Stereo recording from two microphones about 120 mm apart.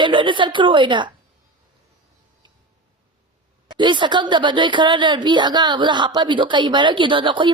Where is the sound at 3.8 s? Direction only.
40° right (ahead or behind).